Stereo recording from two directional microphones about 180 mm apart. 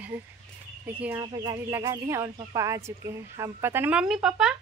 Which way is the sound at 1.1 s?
20° right (ahead or behind).